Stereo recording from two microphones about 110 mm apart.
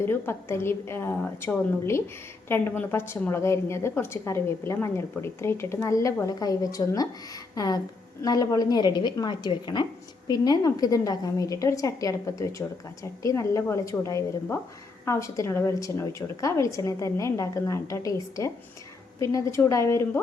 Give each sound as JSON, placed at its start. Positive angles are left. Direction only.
{"t": 0.0, "sound": "a woman's voice", "side_deg": 20}